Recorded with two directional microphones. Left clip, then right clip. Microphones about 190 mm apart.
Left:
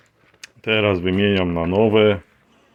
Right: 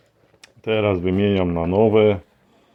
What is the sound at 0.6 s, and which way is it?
Speech, centre (ahead or behind).